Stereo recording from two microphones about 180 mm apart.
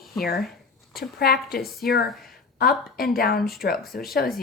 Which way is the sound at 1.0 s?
55° left (ahead or behind).